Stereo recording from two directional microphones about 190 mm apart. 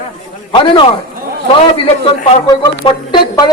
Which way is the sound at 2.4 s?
20° left (ahead or behind).